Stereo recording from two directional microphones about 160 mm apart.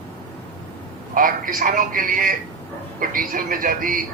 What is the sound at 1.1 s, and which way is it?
A man's voice, 60° right (ahead or behind).